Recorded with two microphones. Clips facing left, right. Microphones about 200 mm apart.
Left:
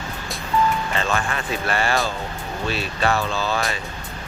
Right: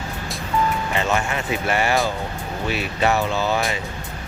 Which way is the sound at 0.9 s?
20° right (ahead or behind).